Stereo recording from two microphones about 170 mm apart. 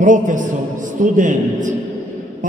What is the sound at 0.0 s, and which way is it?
A man's voice, 50° right (ahead or behind).